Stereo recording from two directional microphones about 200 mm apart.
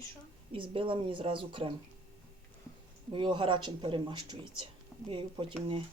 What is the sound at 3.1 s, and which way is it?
Speech, 25° right (ahead or behind).